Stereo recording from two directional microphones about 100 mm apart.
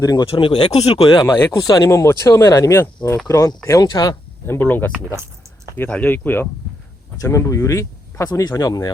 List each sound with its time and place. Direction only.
0.0 s speech: 40° left (ahead or behind)
0.3 s speech: 65° left (ahead or behind); by 1.1 s 85° left
1.2 s speech: 25° left (ahead or behind)
1.5 s speech: 40° left (ahead or behind)
1.9 s speech: 30° left (ahead or behind)
4.4 s speech: 20° left (ahead or behind)
5.9 s speech: 15° left (ahead or behind)
7.2 s speech: 30° left (ahead or behind)